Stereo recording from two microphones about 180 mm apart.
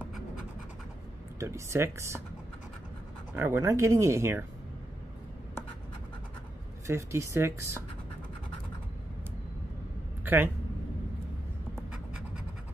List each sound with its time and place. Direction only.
1.4 s speech: 15° right (ahead or behind)
3.3 s speech: 15° right (ahead or behind)
6.9 s speech: 15° right (ahead or behind)
10.2 s speech: 10° right (ahead or behind)
11.7 s writing: 5° right (ahead or behind)